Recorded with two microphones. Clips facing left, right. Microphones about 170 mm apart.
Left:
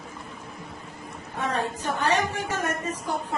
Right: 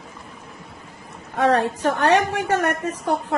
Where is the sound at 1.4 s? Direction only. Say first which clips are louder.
Right 9 dB; 85° right.